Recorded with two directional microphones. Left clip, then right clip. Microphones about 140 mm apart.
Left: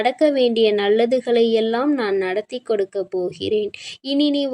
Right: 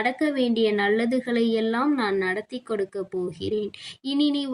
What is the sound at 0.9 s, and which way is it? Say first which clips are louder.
Speech: left 8 dB; 25° left (ahead or behind).